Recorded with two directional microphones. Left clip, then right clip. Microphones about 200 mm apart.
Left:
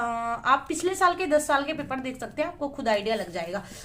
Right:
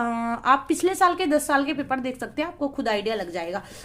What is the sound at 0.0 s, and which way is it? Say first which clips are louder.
A woman's voice: right 2 dB; 40° right (ahead or behind).